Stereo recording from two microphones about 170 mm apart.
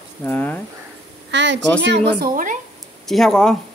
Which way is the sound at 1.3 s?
90° right.